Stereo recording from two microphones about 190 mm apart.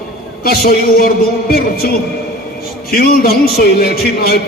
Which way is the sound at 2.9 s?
50° left (ahead or behind).